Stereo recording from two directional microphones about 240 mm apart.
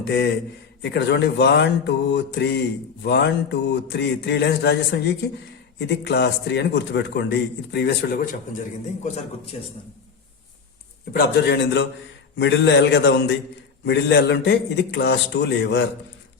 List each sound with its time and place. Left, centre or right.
0.0 s a man's voice: left
9.0 s a man's voice: left
11.1 s a man's voice: left